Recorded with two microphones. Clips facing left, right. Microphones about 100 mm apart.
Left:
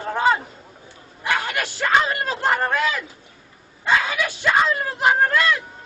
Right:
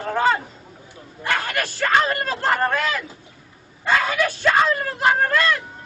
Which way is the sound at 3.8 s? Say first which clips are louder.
Right 1 dB; 15° left (ahead or behind).